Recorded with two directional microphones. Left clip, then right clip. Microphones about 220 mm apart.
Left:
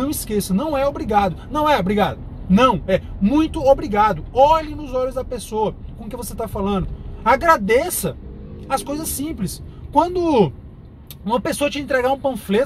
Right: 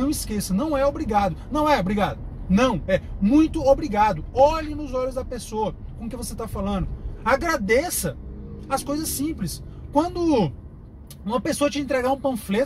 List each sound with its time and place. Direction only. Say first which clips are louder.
0.0 s speech: left 4 dB; 15° left (ahead or behind)